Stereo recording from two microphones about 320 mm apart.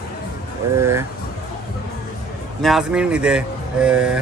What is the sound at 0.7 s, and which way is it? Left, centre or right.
Speech, centre.